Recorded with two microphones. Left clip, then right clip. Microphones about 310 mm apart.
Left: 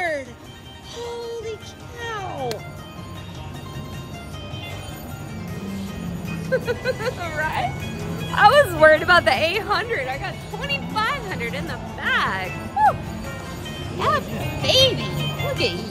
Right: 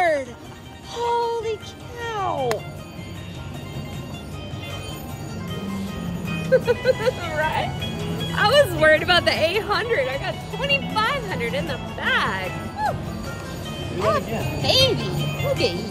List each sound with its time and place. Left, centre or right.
0.0 s music: centre
6.4 s speech: centre
13.9 s speech: centre
14.6 s a child's voice: centre